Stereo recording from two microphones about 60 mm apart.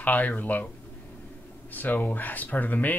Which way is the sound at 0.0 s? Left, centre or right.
Left.